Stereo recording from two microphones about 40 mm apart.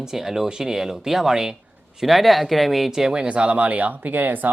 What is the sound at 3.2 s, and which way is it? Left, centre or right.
Speech, right.